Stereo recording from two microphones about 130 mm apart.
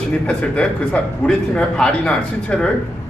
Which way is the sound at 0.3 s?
10° left (ahead or behind).